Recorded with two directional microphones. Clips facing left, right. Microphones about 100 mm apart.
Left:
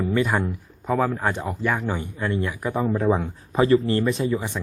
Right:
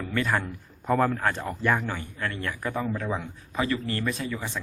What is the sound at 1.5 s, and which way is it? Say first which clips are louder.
Speech: left 1 dB; centre (ahead or behind).